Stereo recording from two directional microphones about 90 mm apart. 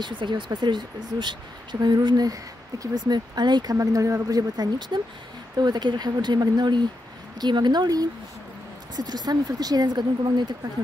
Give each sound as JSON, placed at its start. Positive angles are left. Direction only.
{"t": 0.0, "sound": "speech", "side_deg": -60}
{"t": 3.7, "sound": "speech", "side_deg": -40}